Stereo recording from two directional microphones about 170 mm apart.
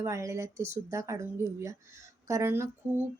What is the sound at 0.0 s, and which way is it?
Speech, 20° right (ahead or behind).